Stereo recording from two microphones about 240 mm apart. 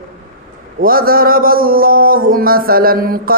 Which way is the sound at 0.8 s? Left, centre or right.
Right.